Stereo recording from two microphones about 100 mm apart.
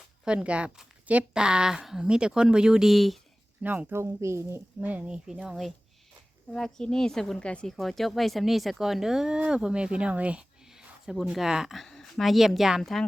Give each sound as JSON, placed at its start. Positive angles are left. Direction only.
{"t": 0.3, "sound": "speech", "side_deg": -10}
{"t": 3.6, "sound": "speech", "side_deg": -15}
{"t": 4.8, "sound": "speech", "side_deg": -15}
{"t": 6.5, "sound": "speech", "side_deg": 5}